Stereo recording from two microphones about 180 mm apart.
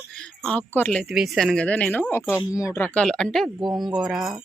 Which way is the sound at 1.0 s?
Centre (ahead or behind).